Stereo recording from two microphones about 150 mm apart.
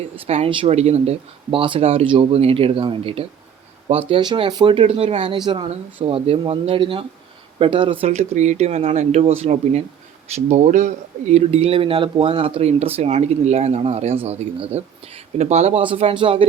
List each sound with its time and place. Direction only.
0.3 s speech: 40° right (ahead or behind)